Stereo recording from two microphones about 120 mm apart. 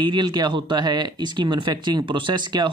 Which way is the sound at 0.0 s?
40° right (ahead or behind).